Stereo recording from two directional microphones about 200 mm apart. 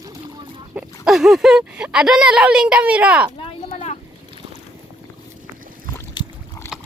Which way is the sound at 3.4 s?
30° left (ahead or behind).